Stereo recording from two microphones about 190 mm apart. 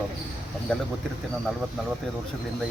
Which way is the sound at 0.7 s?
5° left (ahead or behind).